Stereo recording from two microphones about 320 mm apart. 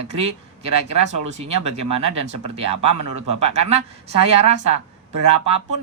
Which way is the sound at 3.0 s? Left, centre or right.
Right.